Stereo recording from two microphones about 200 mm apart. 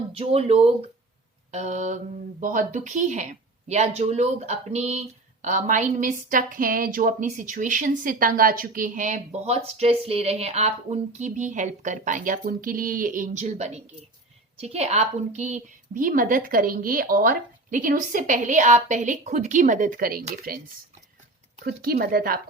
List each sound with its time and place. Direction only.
0.1 s speech: 30° right (ahead or behind); by 20.6 s 45° right (ahead or behind)
21.6 s speech: 50° right (ahead or behind)